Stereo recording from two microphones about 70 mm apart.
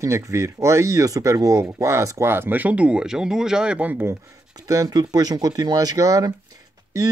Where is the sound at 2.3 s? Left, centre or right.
Right.